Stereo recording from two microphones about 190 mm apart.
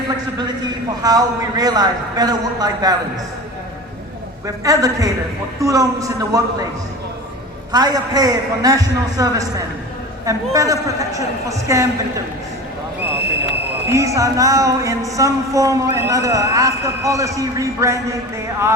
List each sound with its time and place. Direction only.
1.0 s a man's voice: 20° right (ahead or behind)
4.4 s speech: 20° right (ahead or behind)
7.7 s a man's voice: 20° right (ahead or behind)
13.8 s speech: 15° right (ahead or behind)